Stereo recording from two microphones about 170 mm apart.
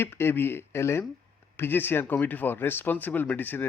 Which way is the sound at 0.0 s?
15° left (ahead or behind).